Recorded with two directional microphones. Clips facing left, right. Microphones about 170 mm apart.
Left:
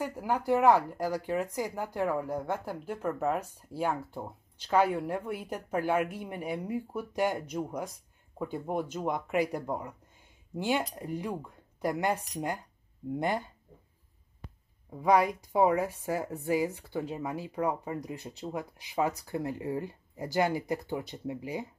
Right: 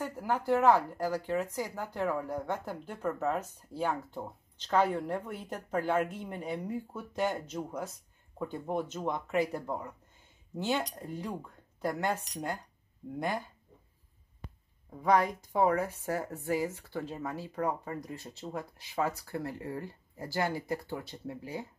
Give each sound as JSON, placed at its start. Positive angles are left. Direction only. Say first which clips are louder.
{"t": 0.0, "sound": "speech", "louder": "left 2 dB", "side_deg": 10}
{"t": 14.9, "sound": "speech", "louder": "left 2 dB", "side_deg": 10}